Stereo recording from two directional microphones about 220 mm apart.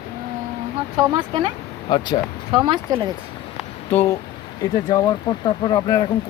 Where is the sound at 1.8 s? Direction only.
20° left (ahead or behind).